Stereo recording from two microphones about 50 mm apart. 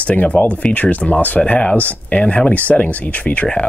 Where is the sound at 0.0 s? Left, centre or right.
Left.